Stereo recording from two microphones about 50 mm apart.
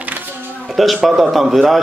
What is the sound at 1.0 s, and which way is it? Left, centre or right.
Speech, centre.